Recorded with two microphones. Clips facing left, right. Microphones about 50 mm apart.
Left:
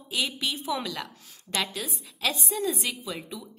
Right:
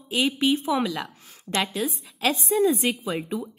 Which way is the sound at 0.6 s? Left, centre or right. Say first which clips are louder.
Right 6 dB; centre.